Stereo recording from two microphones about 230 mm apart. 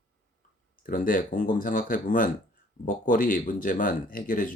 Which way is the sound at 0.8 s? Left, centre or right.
Left.